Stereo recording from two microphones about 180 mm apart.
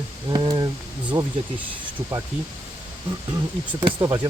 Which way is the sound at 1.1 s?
25° right (ahead or behind).